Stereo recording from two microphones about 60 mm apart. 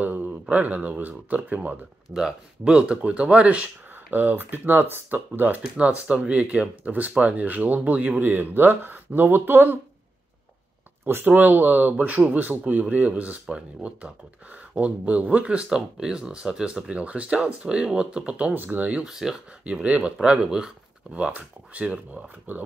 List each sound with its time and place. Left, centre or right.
0.0 s speech: right
2.1 s speech: centre; by 5.6 s right
5.6 s speech: centre
11.1 s speech: right; by 16.9 s centre
16.9 s speech: right
18.5 s speech: right
19.0 s speech: centre
19.6 s speech: right